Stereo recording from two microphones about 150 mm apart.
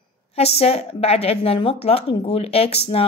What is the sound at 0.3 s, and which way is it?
A woman's voice, 40° left (ahead or behind).